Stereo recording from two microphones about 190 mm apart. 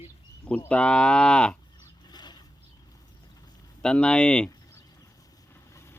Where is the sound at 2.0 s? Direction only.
20° left (ahead or behind).